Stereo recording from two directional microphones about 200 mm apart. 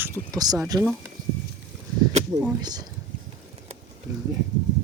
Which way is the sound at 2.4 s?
15° right (ahead or behind).